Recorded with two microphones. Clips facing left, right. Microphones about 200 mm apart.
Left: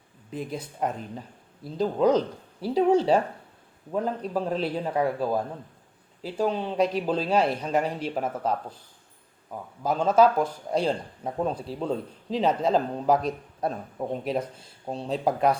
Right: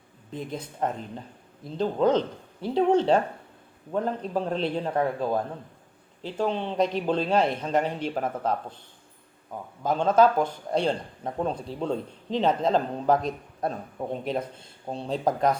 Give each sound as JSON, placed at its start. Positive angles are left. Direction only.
{"t": 0.3, "sound": "speech", "side_deg": 10}
{"t": 9.8, "sound": "speech", "side_deg": 5}